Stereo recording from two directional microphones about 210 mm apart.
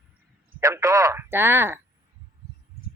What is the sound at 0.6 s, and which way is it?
Speech, 15° right (ahead or behind).